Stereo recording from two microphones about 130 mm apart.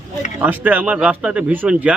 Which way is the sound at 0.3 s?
15° right (ahead or behind).